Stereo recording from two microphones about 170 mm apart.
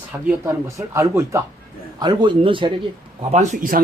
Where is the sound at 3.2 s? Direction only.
40° right (ahead or behind).